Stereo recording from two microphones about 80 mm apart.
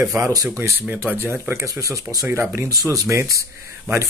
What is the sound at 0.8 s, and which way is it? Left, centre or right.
Speech, right.